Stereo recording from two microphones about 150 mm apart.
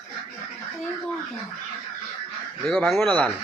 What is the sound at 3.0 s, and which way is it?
Speech, 10° left (ahead or behind).